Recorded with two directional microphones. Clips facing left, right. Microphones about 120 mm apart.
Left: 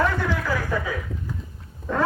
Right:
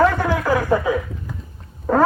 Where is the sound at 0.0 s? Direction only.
50° right (ahead or behind).